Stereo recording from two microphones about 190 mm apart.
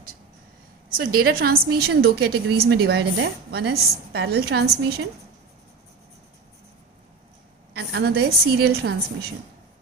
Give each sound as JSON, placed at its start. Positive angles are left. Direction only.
{"t": 0.9, "sound": "a woman's voice", "side_deg": -50}
{"t": 7.7, "sound": "a woman's voice", "side_deg": -60}